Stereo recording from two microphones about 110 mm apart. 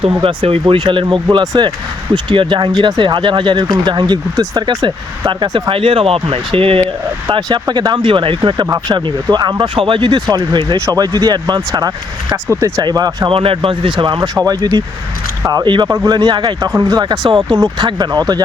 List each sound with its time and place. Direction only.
0.0 s speech: 55° right (ahead or behind)
7.3 s speech: 45° right (ahead or behind)
9.7 s speech: 55° right (ahead or behind)
12.5 s speech: 25° right (ahead or behind)
12.8 s speech: 35° right (ahead or behind)
13.3 s speech: 55° right (ahead or behind)
14.3 s speech: 35° right (ahead or behind)
16.6 s speech: 30° right (ahead or behind)